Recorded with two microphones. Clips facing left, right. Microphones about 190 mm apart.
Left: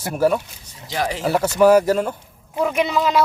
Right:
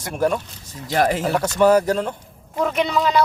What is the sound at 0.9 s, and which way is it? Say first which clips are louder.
Speech: right 5 dB; 50° right (ahead or behind).